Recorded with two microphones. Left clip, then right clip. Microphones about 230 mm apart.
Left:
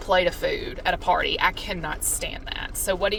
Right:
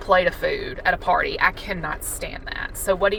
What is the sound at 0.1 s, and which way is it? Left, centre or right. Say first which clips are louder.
Speech: right 3 dB; right.